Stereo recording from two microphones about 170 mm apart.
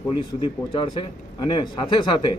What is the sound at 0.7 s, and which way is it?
A man's voice, 30° left (ahead or behind).